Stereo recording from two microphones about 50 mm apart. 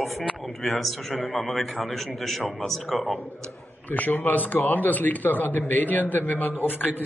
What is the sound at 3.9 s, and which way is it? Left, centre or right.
A man's voice, left.